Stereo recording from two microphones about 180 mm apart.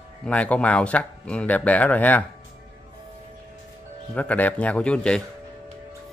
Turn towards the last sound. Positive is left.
turn(degrees=5)  # may be behind; listen again after turning